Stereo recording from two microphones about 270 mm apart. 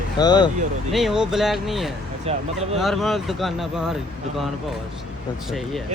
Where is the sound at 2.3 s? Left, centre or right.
Right.